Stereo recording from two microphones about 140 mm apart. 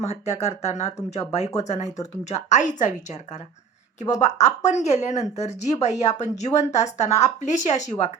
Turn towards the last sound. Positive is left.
turn(degrees=55)  # may be behind; listen again after turning